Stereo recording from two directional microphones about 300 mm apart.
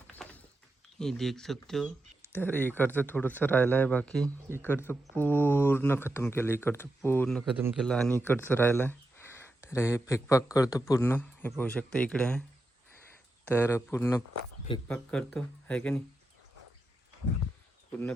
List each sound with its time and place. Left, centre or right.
0.2 s a sound: centre
0.9 s speech: centre
13.5 s speech: centre